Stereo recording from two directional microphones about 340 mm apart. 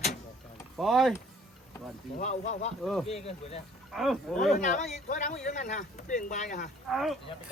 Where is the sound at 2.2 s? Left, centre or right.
Centre.